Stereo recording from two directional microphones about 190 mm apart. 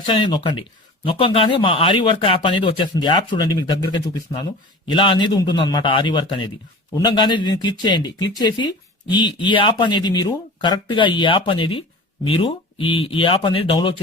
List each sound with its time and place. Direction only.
0.0 s speech: 25° left (ahead or behind)